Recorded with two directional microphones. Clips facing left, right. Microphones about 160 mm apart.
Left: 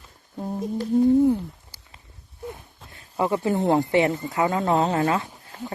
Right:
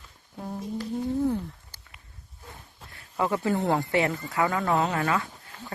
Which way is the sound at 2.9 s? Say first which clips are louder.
Left 3 dB; 25° left (ahead or behind).